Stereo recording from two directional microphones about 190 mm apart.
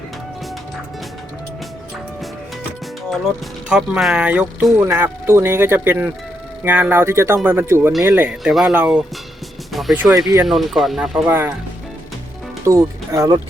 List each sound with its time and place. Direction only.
3.7 s speech: 5° right (ahead or behind)
10.2 s speech: 20° right (ahead or behind)
10.4 s speech: centre (ahead or behind)
12.6 s speech: 15° right (ahead or behind)